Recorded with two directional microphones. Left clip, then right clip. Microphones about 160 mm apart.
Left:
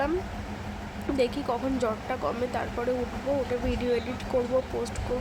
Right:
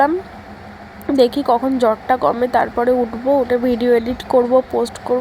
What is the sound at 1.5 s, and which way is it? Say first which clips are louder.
Speech: right 13 dB; 30° right (ahead or behind).